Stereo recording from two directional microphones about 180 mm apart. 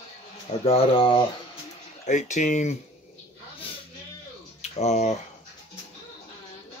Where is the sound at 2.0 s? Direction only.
40° left (ahead or behind).